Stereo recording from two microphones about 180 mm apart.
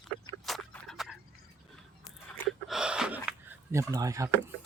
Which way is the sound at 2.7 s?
5° right (ahead or behind).